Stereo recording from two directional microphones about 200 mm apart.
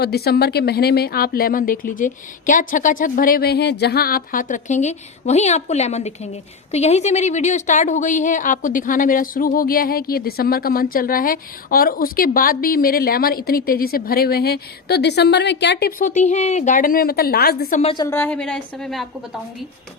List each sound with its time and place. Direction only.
0.0 s a woman's voice: 50° left (ahead or behind)
16.0 s a woman's voice: 35° left (ahead or behind)
17.9 s a woman's voice: 15° left (ahead or behind)